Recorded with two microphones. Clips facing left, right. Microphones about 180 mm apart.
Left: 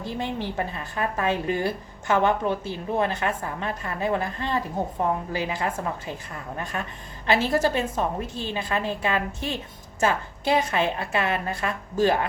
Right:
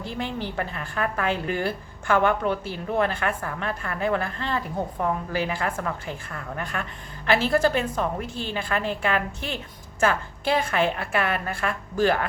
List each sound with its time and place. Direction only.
0.2 s a woman's voice: 20° left (ahead or behind)